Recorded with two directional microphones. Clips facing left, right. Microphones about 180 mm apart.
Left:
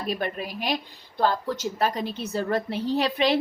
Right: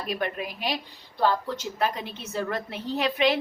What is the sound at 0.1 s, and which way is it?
A woman's voice, 40° left (ahead or behind).